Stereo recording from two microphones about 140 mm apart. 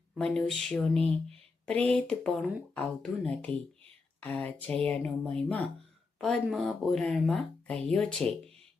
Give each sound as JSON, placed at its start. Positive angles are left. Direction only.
{"t": 0.1, "sound": "speech", "side_deg": 5}